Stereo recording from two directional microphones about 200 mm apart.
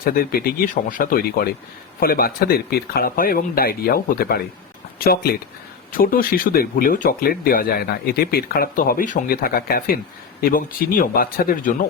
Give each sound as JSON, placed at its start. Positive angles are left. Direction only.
{"t": 0.0, "sound": "speech", "side_deg": 50}